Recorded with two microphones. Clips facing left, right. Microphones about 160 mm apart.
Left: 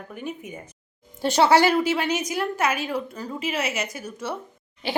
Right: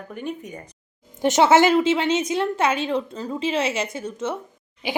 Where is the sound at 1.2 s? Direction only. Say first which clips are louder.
Right 2 dB; 20° right (ahead or behind).